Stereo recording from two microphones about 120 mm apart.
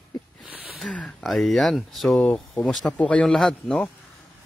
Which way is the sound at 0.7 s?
5° left (ahead or behind).